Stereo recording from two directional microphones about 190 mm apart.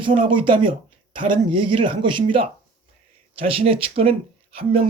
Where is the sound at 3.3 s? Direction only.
30° right (ahead or behind).